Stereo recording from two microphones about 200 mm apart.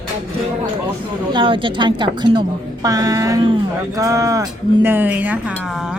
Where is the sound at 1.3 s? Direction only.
25° right (ahead or behind).